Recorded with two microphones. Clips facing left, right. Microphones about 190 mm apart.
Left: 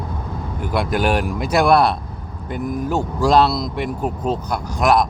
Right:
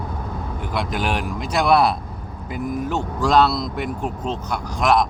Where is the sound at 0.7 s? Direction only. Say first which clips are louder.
Left 5 dB; 5° left (ahead or behind).